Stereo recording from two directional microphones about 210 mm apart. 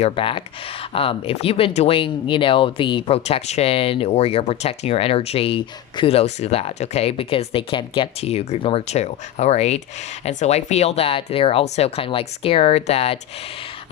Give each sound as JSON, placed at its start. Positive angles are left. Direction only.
{"t": 0.0, "sound": "speech", "side_deg": 25}